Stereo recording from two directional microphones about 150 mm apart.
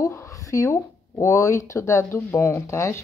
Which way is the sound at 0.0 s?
15° left (ahead or behind).